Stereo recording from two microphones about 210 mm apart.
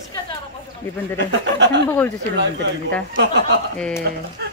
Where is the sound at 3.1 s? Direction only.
55° right (ahead or behind).